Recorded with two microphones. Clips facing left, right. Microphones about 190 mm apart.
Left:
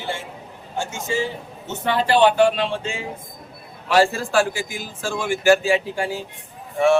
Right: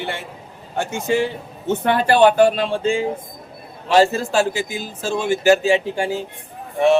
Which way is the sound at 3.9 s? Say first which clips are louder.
Right 2 dB; 20° right (ahead or behind).